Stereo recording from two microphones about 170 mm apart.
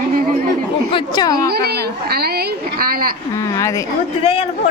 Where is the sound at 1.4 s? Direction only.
70° right (ahead or behind).